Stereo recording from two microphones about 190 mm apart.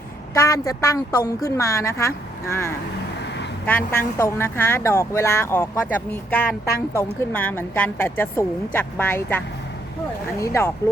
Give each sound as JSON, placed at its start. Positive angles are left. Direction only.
{"t": 0.3, "sound": "a woman's voice", "side_deg": 15}
{"t": 10.4, "sound": "a woman's voice", "side_deg": 15}